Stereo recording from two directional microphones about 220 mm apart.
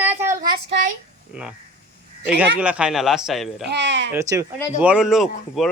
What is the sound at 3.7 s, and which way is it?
Speech, 50° right (ahead or behind).